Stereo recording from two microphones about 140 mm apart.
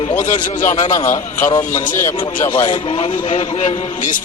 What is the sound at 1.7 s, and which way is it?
Speech, 70° left (ahead or behind).